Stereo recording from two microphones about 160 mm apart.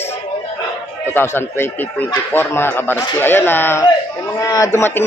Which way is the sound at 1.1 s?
15° left (ahead or behind).